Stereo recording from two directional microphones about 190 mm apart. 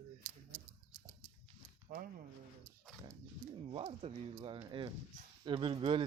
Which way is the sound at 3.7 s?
30° right (ahead or behind).